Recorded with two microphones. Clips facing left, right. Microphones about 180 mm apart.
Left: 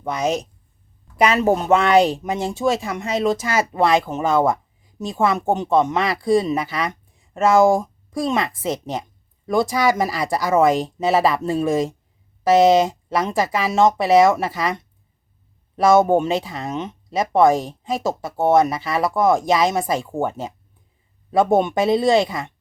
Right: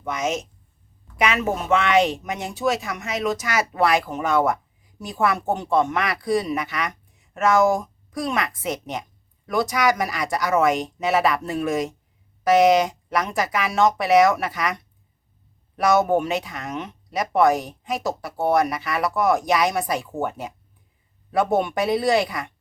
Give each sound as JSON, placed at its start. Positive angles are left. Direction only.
{"t": 0.0, "sound": "speech", "side_deg": 35}